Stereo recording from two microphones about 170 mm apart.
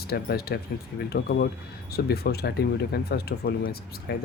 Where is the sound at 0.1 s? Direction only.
65° left (ahead or behind).